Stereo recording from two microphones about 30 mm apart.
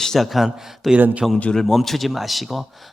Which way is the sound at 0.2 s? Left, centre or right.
Centre.